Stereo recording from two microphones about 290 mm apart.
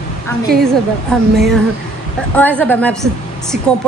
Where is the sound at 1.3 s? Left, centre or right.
Centre.